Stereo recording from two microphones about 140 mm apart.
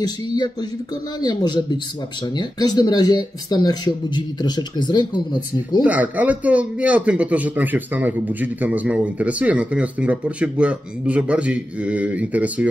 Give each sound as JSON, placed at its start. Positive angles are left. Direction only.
{"t": 0.0, "sound": "speech", "side_deg": 30}
{"t": 5.9, "sound": "a man's voice", "side_deg": -10}